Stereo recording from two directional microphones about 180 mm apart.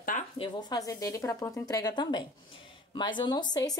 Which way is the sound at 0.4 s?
25° left (ahead or behind).